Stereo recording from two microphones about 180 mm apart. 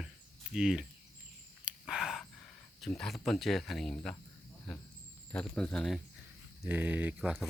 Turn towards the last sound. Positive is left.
turn(degrees=0)  # may be behind; listen again after turning